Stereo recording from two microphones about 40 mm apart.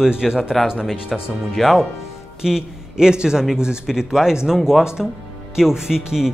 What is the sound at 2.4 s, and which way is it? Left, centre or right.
A man's voice, centre.